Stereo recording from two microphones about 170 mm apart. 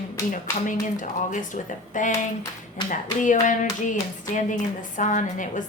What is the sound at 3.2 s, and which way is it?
A woman's voice, 50° left (ahead or behind).